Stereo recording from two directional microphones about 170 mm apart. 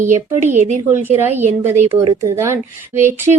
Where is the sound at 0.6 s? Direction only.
45° right (ahead or behind).